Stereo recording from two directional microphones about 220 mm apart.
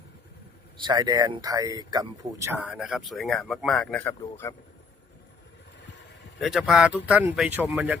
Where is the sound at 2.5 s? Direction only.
Centre (ahead or behind).